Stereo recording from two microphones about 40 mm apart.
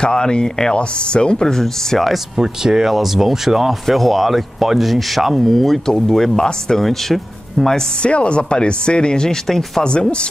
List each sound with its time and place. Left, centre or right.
0.0 s speech: left
2.3 s speech: centre
8.0 s speech: left
9.5 s speech: centre